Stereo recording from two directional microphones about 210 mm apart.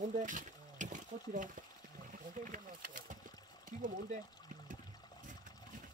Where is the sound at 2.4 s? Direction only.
40° right (ahead or behind).